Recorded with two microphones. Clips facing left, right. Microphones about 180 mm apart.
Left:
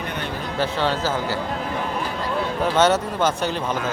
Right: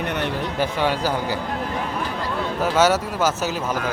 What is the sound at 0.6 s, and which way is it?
Speech, 15° right (ahead or behind).